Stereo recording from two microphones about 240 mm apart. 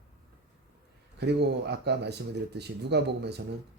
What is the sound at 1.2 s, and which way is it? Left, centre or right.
Speech, right.